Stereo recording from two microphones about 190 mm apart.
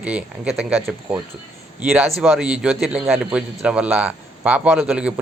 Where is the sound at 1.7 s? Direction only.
5° right (ahead or behind).